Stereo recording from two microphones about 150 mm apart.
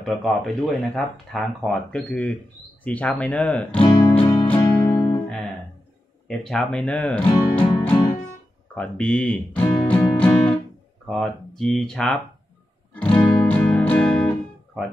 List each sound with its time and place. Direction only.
0.0 s speech: centre (ahead or behind)
4.5 s music: 15° left (ahead or behind)
6.2 s speech: 5° left (ahead or behind)
12.9 s music: 10° left (ahead or behind)
14.8 s speech: centre (ahead or behind)